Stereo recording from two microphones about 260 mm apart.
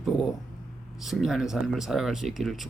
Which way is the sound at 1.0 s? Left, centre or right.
Centre.